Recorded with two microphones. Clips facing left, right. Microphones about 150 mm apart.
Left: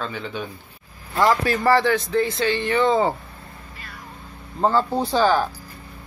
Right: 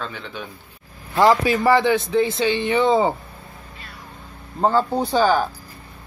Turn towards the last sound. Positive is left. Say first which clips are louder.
# right 1 dB
turn(degrees=-5)  # may be behind; listen again after turning